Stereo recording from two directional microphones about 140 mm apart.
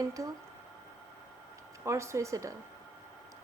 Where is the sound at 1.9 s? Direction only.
20° right (ahead or behind).